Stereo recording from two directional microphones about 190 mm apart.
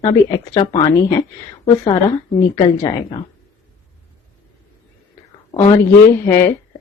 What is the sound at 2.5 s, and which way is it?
Speech, 20° left (ahead or behind).